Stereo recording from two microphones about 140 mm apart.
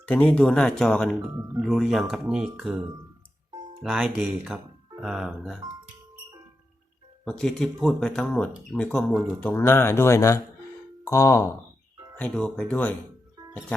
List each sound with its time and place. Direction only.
0.0 s speech: 10° left (ahead or behind)
3.8 s speech: 5° right (ahead or behind)
7.3 s speech: 5° left (ahead or behind); by 11.4 s 20° left (ahead or behind)
12.1 s speech: 5° left (ahead or behind)